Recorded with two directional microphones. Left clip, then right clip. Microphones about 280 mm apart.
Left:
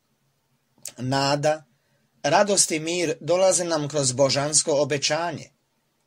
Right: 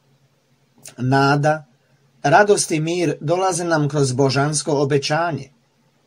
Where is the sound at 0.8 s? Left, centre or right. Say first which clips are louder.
Right 7 dB; left.